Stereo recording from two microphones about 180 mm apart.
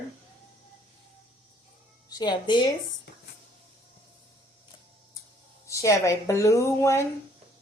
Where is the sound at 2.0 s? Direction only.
20° left (ahead or behind).